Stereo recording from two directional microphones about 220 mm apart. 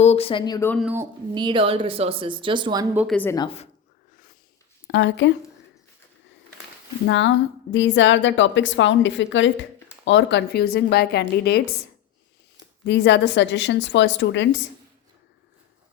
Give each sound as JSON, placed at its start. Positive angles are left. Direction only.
{"t": 0.0, "sound": "speech", "side_deg": 30}
{"t": 0.8, "sound": "speech", "side_deg": -5}
{"t": 1.3, "sound": "speech", "side_deg": -20}
{"t": 3.0, "sound": "speech", "side_deg": 5}
{"t": 3.3, "sound": "speech", "side_deg": 20}
{"t": 4.9, "sound": "a woman's voice", "side_deg": 55}
{"t": 7.1, "sound": "a woman's voice", "side_deg": 55}
{"t": 12.8, "sound": "a woman's voice", "side_deg": 50}